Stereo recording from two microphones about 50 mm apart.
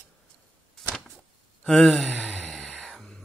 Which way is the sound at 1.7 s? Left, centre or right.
Centre.